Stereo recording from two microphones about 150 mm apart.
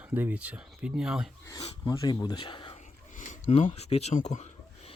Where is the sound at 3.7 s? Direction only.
45° left (ahead or behind).